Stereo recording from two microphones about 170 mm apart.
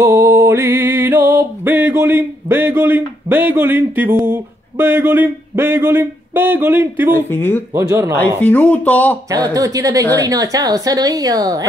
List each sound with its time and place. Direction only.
0.0 s music: 20° right (ahead or behind)
4.3 s a sound: 10° right (ahead or behind)
7.2 s speech: 10° left (ahead or behind)
7.7 s a sound: 20° right (ahead or behind)
8.4 s speech: 10° left (ahead or behind)
9.3 s a woman's voice: 20° right (ahead or behind)